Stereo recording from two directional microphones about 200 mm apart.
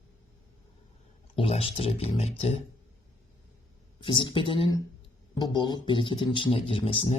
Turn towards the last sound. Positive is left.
turn(degrees=25)  # may be behind; listen again after turning